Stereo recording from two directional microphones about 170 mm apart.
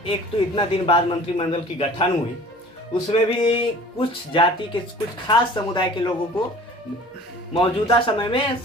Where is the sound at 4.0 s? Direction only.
30° left (ahead or behind).